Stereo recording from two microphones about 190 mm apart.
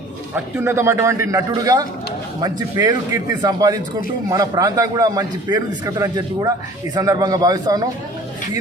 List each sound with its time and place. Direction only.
0.3 s a man's voice: 10° right (ahead or behind)